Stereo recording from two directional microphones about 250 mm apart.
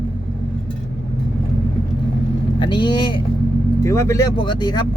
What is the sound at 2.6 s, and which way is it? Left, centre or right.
Speech, centre.